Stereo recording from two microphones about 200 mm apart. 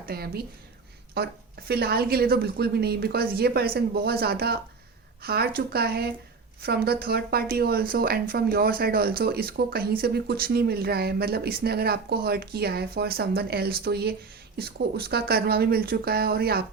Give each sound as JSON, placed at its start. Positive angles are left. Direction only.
{"t": 0.0, "sound": "a woman's voice", "side_deg": -50}